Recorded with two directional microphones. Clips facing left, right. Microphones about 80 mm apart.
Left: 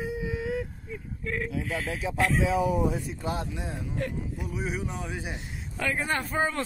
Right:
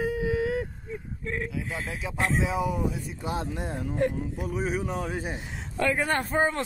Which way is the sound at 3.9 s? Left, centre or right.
Right.